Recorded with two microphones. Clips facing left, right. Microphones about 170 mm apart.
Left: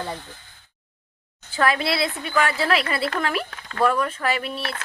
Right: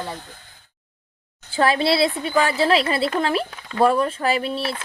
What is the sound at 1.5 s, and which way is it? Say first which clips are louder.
A woman's voice: right 3 dB; 30° right (ahead or behind).